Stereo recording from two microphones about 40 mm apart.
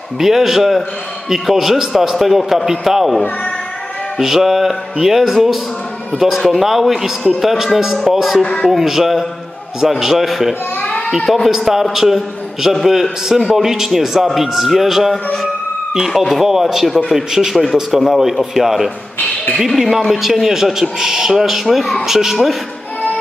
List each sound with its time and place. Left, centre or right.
0.2 s a man's voice: centre
4.2 s a man's voice: centre
8.4 s speech: centre
8.6 s a man's voice: centre
11.5 s a man's voice: centre